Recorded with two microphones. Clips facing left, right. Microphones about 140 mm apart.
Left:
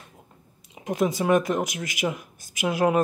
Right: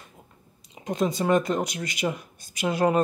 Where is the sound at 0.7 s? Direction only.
5° left (ahead or behind).